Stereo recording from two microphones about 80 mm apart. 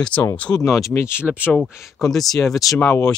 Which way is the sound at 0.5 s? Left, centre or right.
Left.